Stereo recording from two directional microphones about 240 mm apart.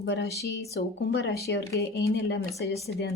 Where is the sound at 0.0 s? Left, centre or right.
Left.